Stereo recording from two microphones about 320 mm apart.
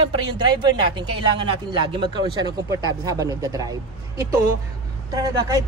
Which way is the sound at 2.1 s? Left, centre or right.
Centre.